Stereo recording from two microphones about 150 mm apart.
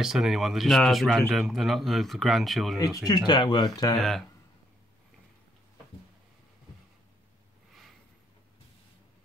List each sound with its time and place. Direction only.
0.0 s speech: centre (ahead or behind)
3.3 s speech: 30° left (ahead or behind)
3.9 s speech: centre (ahead or behind)